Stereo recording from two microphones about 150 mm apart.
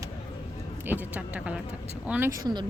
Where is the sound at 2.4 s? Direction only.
30° right (ahead or behind).